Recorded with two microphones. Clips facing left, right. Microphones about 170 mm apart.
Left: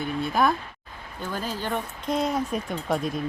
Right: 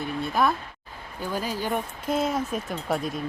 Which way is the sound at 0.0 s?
Centre (ahead or behind).